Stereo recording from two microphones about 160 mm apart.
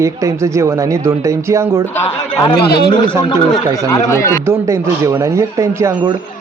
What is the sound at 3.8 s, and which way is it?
Speech, 20° left (ahead or behind).